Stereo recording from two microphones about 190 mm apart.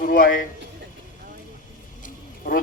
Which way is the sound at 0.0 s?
45° left (ahead or behind).